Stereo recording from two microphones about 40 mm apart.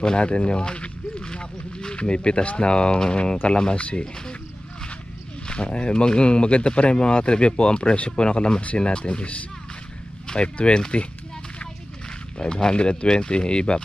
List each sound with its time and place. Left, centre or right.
0.0 s speech: left
5.5 s speech: left
12.4 s speech: centre